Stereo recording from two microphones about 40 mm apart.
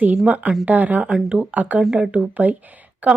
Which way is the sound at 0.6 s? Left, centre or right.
Right.